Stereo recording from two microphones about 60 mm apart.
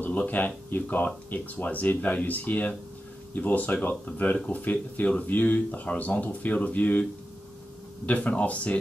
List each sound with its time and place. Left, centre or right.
0.0 s speech: left
8.1 s speech: left